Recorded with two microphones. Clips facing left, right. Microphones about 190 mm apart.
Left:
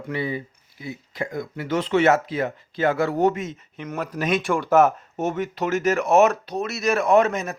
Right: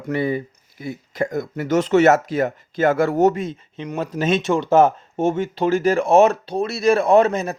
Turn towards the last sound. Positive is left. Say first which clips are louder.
# right 3 dB
turn(degrees=-35)  # may be behind; listen again after turning